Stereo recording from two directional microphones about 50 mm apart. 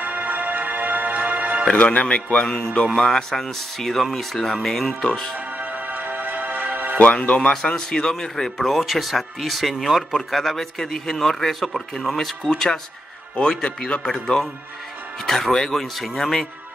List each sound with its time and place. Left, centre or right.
0.0 s music: right
1.7 s speech: left
2.3 s a man's voice: centre
5.3 s music: right
7.0 s speech: left
7.5 s a man's voice: centre